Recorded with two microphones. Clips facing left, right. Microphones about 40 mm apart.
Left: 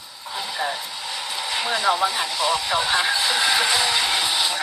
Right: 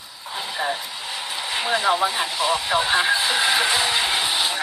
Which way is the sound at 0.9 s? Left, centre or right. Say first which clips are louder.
Even; right.